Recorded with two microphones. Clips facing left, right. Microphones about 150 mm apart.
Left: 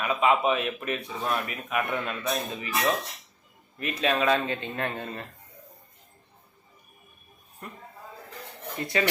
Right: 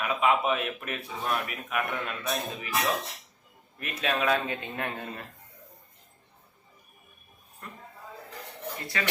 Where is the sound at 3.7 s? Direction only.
Centre (ahead or behind).